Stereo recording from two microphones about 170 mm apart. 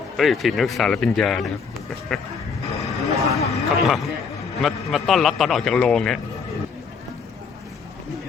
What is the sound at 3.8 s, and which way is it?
A man's voice, centre (ahead or behind).